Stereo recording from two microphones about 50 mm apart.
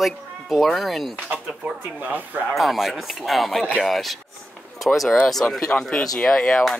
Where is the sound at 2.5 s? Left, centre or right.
Centre.